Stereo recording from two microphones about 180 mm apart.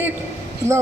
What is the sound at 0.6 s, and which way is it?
Speech, 40° right (ahead or behind).